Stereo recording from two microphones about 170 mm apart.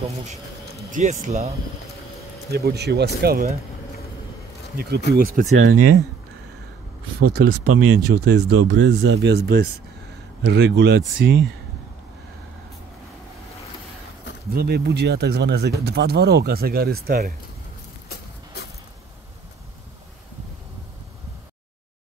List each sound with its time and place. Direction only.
0.0 s speech: 45° right (ahead or behind)
2.5 s speech: 70° right (ahead or behind)
3.2 s speech: 65° right (ahead or behind)
4.7 s speech: 65° right (ahead or behind)
5.1 s speech: 55° right (ahead or behind)
7.2 s speech: 60° right (ahead or behind)
10.4 s speech: 90° right
14.5 s speech: 70° right (ahead or behind)